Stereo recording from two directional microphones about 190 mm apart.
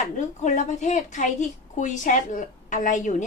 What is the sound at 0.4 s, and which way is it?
A woman's voice, 40° left (ahead or behind).